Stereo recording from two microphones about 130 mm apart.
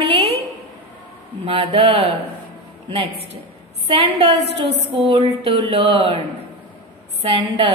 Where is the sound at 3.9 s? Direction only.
50° right (ahead or behind).